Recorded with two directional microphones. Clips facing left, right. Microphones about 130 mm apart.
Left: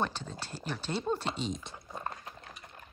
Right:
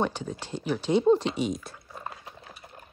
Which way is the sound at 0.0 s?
15° right (ahead or behind).